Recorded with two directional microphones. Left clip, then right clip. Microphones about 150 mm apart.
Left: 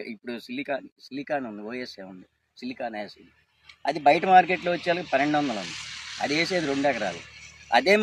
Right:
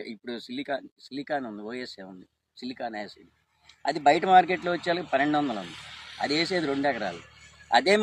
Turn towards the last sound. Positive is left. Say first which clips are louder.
# left 1 dB
turn(degrees=15)  # may be behind; listen again after turning